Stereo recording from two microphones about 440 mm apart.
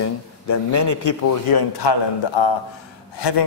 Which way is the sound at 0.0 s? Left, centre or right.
Left.